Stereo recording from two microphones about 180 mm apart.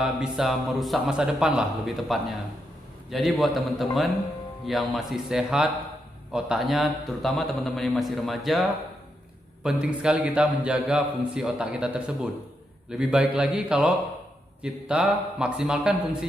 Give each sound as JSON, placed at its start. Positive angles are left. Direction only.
{"t": 0.0, "sound": "a man's voice", "side_deg": -5}